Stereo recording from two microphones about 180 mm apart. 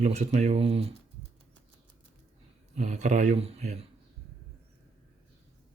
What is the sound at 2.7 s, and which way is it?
A man's voice, 40° right (ahead or behind).